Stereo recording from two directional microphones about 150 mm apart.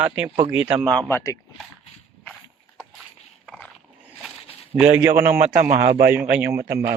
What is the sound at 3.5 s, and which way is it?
Dog, 5° left (ahead or behind).